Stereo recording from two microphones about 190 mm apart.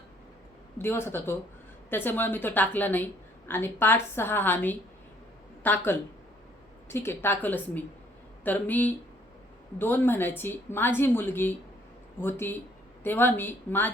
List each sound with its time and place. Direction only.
0.8 s a woman's voice: 10° left (ahead or behind)